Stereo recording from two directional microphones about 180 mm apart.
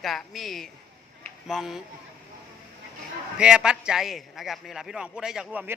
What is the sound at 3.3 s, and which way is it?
A man's voice, 5° right (ahead or behind).